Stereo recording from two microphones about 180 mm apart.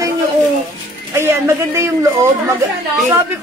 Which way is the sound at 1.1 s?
15° right (ahead or behind).